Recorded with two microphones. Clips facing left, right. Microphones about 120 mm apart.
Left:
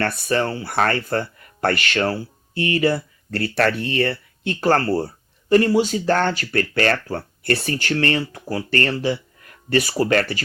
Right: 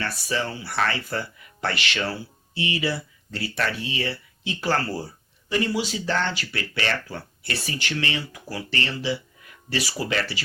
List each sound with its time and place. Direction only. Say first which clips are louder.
0.0 s speech: left 7 dB; 55° left (ahead or behind)